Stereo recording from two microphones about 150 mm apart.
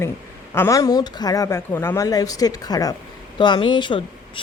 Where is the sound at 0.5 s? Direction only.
20° left (ahead or behind).